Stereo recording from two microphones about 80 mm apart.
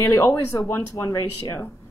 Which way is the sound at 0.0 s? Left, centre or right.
Left.